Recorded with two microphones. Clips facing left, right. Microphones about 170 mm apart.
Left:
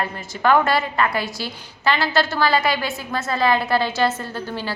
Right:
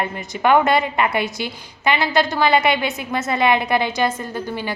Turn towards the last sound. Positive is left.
turn(degrees=-15)  # may be behind; listen again after turning